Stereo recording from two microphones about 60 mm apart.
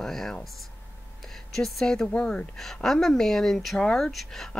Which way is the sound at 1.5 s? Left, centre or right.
Centre.